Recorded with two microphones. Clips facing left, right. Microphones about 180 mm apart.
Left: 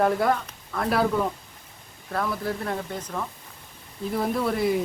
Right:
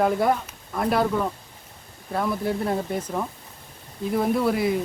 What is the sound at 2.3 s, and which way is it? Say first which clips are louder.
Speech: right 4 dB; 25° right (ahead or behind).